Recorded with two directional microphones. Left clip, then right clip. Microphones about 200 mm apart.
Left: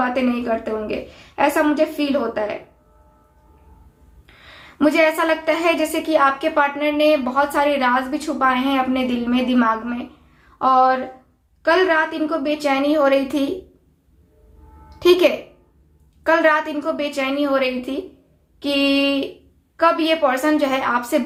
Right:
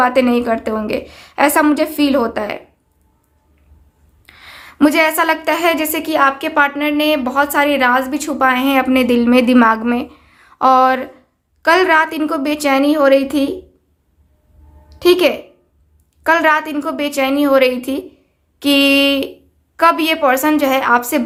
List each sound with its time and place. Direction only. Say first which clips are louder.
0.0 s a woman's voice: right 8 dB; 50° right (ahead or behind)
4.4 s a woman's voice: right 7 dB; 45° right (ahead or behind)
14.8 s a sound: right 2 dB; 35° right (ahead or behind)
16.2 s a woman's voice: right 3 dB; 35° right (ahead or behind)